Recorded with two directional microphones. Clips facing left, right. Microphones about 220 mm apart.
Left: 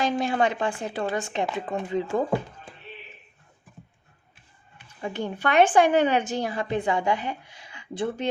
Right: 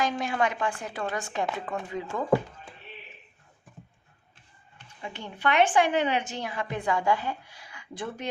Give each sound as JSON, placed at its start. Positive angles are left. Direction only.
{"t": 0.0, "sound": "speech", "side_deg": 30}
{"t": 4.9, "sound": "a woman's voice", "side_deg": 45}